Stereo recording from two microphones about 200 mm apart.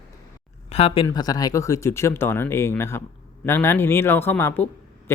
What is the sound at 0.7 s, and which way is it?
Speech, 30° left (ahead or behind).